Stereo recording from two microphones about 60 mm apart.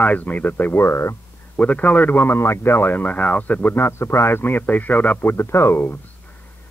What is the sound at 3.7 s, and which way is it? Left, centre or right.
Speech, left.